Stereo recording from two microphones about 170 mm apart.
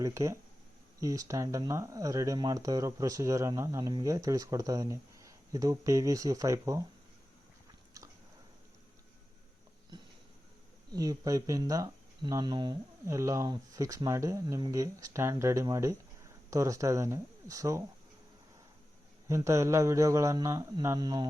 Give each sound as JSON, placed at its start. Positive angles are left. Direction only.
{"t": 0.0, "sound": "speech", "side_deg": -15}
{"t": 10.9, "sound": "speech", "side_deg": -20}
{"t": 19.3, "sound": "speech", "side_deg": -15}